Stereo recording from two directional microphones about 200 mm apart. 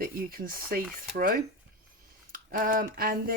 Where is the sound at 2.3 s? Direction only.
40° right (ahead or behind).